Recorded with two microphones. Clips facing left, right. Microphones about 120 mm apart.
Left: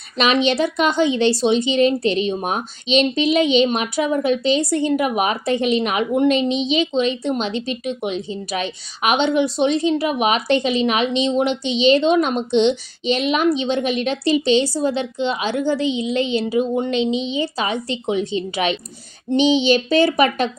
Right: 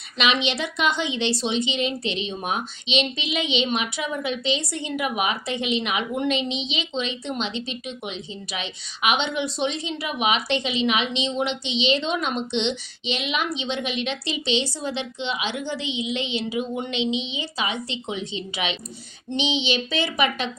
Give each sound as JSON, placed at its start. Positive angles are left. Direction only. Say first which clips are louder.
{"t": 0.2, "sound": "speech", "louder": "left 7 dB", "side_deg": 40}